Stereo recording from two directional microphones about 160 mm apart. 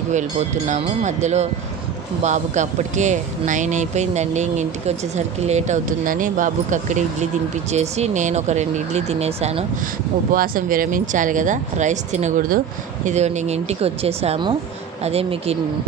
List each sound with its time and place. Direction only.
0.7 s speech: 45° right (ahead or behind)
10.3 s speech: 60° right (ahead or behind); by 15.5 s 40° right (ahead or behind)